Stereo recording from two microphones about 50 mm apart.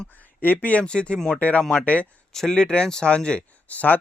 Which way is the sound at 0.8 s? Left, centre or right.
Left.